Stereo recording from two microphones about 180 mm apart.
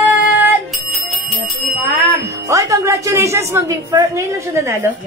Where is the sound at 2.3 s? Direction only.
15° right (ahead or behind).